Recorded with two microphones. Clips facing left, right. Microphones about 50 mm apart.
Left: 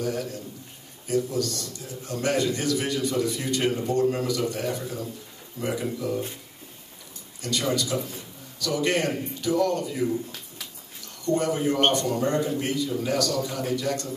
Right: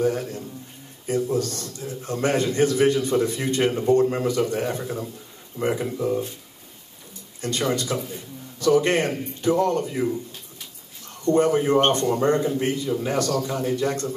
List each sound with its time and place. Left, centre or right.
0.0 s a man's voice: right
7.4 s a man's voice: right
11.2 s a man's voice: right